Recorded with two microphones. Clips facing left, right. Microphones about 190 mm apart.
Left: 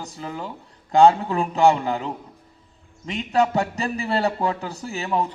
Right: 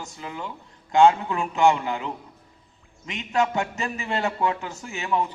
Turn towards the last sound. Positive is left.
turn(degrees=35)  # may be behind; listen again after turning